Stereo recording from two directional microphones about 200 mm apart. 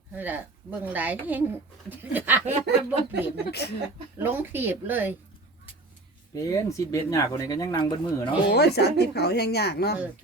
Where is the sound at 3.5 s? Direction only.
55° left (ahead or behind).